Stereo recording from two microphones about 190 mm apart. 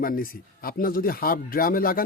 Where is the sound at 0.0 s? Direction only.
50° left (ahead or behind).